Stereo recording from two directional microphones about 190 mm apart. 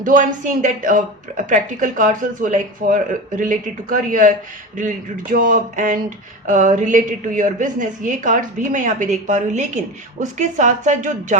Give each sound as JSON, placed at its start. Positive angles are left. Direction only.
{"t": 0.0, "sound": "a woman's voice", "side_deg": -45}